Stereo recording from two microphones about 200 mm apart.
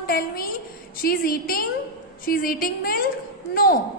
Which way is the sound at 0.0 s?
50° left (ahead or behind).